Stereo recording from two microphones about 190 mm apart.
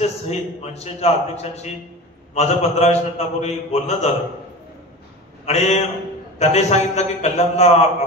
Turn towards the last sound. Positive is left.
turn(degrees=35)  # may be behind; listen again after turning